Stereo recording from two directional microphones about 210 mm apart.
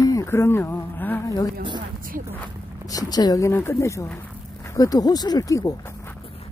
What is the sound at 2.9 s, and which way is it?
Speech, 20° left (ahead or behind).